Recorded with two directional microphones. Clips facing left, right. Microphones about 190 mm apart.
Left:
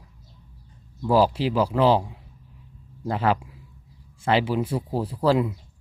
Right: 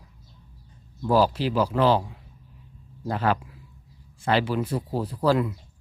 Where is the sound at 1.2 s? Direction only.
5° left (ahead or behind).